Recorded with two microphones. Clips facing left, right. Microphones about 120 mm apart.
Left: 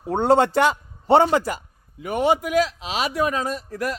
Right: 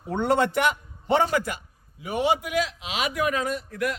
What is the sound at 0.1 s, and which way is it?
A man's voice, 30° left (ahead or behind).